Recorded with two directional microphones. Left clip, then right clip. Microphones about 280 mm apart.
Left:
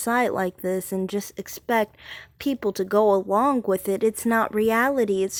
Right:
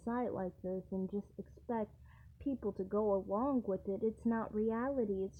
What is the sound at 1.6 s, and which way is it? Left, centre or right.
Speech, left.